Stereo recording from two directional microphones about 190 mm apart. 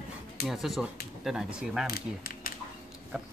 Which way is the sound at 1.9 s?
50° left (ahead or behind).